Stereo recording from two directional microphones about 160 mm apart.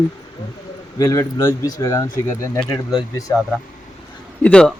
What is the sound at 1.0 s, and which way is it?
A man's voice, 20° left (ahead or behind).